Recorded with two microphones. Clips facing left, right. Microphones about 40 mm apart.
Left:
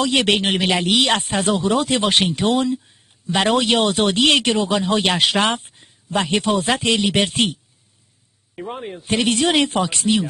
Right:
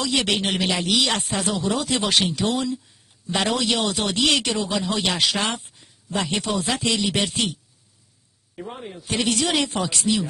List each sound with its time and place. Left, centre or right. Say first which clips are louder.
0.0 s speech: left 5 dB; left
8.5 s a man's voice: left 5 dB; left
9.0 s speech: left 5 dB; left